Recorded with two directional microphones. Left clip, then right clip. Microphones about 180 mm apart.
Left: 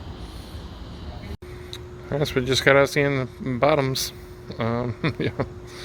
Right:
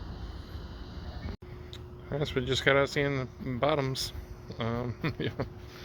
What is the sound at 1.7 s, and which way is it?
Speech, 15° left (ahead or behind).